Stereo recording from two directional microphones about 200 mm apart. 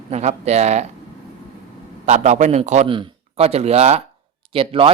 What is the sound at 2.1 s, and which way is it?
A man's voice, 35° right (ahead or behind).